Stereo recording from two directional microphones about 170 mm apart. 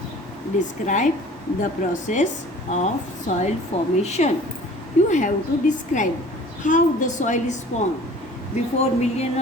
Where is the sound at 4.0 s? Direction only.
40° left (ahead or behind).